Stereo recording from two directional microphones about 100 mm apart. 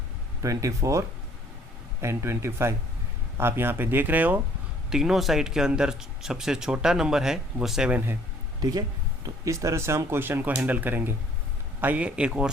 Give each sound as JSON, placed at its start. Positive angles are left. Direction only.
{"t": 0.4, "sound": "speech", "side_deg": -35}
{"t": 4.9, "sound": "speech", "side_deg": -5}
{"t": 7.9, "sound": "a man's voice", "side_deg": -20}
{"t": 9.2, "sound": "a man's voice", "side_deg": -35}